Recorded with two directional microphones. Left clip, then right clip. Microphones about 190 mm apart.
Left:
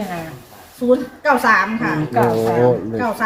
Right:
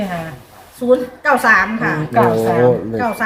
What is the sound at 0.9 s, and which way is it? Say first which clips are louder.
A woman's voice: right 2 dB; 5° right (ahead or behind).